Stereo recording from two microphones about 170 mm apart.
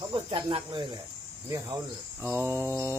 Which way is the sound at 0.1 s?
25° right (ahead or behind).